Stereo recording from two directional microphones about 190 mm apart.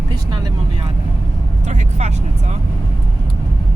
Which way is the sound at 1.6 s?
35° right (ahead or behind).